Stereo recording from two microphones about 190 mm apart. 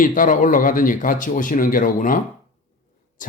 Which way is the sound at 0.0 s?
45° left (ahead or behind).